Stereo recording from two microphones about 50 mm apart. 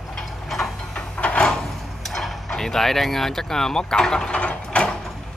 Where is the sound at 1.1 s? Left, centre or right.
Left.